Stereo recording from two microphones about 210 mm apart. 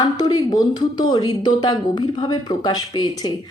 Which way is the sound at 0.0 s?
20° left (ahead or behind).